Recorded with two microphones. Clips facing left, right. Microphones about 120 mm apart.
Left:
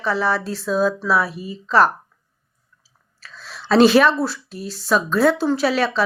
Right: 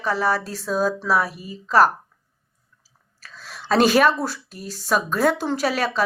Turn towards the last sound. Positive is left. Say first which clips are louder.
# left 4 dB
turn(degrees=-45)  # may be behind; listen again after turning